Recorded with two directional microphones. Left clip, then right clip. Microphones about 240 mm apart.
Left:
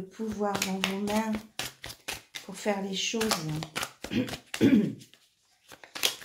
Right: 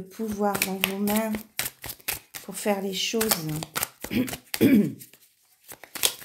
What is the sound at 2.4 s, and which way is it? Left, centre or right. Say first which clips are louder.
Speech: right 4 dB; right.